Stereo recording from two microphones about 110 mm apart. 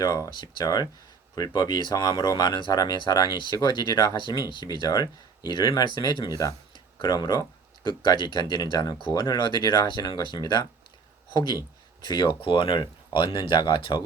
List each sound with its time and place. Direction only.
0.0 s speech: 35° left (ahead or behind)